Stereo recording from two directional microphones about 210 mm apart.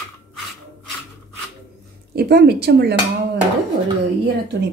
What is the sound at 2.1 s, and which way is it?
Speech, 50° right (ahead or behind).